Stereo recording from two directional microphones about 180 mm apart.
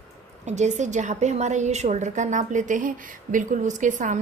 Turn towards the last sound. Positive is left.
turn(degrees=-45)  # may be behind; listen again after turning